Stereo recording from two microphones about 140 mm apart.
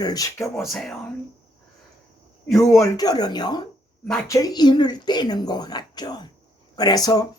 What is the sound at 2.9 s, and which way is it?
Speech, 30° left (ahead or behind).